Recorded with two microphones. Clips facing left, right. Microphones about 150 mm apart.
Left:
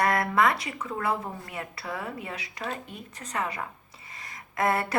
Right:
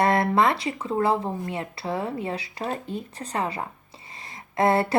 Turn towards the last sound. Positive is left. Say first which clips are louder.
# right 5 dB
turn(degrees=-30)  # may be behind; listen again after turning